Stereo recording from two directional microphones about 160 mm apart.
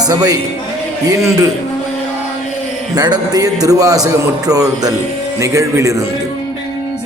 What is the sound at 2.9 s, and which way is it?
A man's voice, 25° right (ahead or behind).